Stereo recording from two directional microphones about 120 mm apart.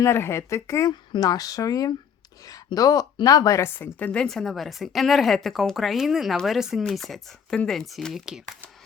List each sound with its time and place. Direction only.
0.0 s speech: 20° left (ahead or behind)
0.9 s a woman's voice: 35° left (ahead or behind); by 8.4 s 5° right (ahead or behind)